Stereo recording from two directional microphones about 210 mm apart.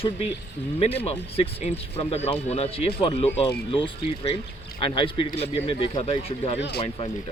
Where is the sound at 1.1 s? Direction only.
30° left (ahead or behind).